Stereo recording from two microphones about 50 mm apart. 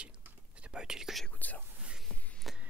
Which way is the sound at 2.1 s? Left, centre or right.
Left.